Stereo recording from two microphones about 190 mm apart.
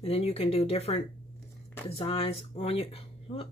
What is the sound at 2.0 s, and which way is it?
Speech, 30° left (ahead or behind).